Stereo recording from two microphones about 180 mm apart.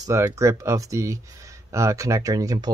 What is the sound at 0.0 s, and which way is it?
Speech, 15° right (ahead or behind).